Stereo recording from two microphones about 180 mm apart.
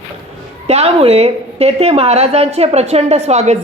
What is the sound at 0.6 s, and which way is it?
A man's voice, 35° right (ahead or behind).